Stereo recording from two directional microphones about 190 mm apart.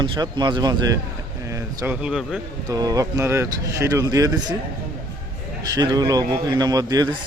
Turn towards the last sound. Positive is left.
turn(degrees=-20)  # may be behind; listen again after turning